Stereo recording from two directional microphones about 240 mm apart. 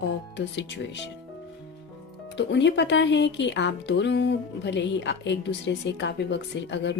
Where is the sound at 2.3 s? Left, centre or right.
Left.